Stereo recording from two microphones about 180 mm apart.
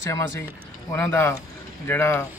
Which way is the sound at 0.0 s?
15° left (ahead or behind).